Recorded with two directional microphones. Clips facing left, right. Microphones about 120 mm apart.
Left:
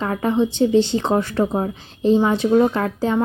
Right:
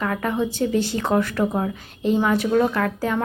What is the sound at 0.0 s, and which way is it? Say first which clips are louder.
Speech: left 4 dB; 25° left (ahead or behind).